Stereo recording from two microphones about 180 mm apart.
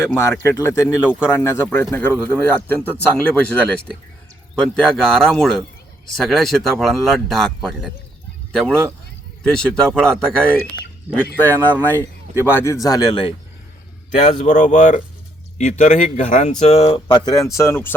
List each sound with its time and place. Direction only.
0.0 s speech: 15° left (ahead or behind)
14.1 s speech: 40° left (ahead or behind); by 17.9 s 15° left (ahead or behind)